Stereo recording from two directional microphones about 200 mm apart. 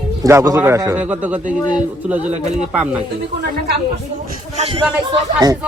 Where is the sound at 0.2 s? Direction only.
15° right (ahead or behind).